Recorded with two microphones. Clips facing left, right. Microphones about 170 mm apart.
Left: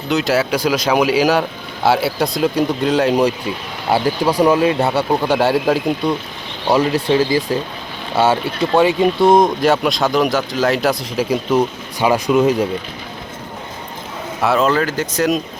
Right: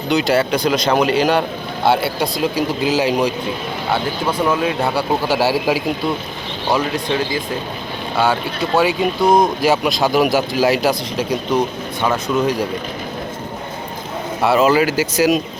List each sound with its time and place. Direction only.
0.1 s speech: centre (ahead or behind)
3.9 s speech: 35° left (ahead or behind)
4.4 s speech: 5° left (ahead or behind)
8.1 s speech: centre (ahead or behind)
14.4 s speech: 5° right (ahead or behind)